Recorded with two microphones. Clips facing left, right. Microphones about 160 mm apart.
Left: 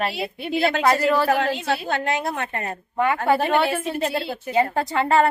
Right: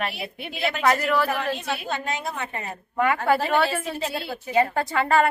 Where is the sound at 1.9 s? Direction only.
70° left (ahead or behind).